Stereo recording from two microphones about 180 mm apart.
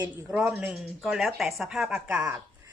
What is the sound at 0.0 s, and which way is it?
A woman's voice, 5° right (ahead or behind).